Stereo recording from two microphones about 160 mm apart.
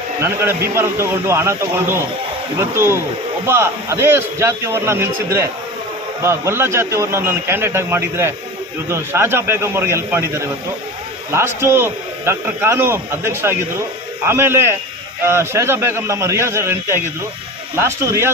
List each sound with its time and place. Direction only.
0.7 s speech: 15° right (ahead or behind)